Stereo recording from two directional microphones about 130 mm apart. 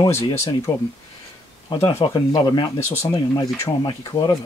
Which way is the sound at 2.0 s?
30° left (ahead or behind).